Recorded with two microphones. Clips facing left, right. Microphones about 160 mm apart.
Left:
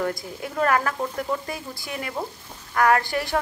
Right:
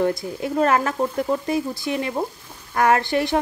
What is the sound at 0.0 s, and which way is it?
Frying, 25° right (ahead or behind).